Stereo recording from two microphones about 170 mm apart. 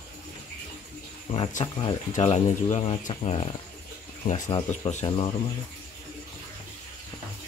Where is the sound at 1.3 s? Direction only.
45° left (ahead or behind).